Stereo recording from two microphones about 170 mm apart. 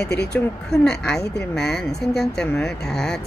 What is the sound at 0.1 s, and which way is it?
Speech, 75° left (ahead or behind).